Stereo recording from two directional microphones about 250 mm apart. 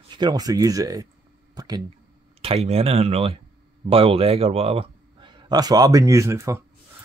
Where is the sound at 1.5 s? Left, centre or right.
Centre.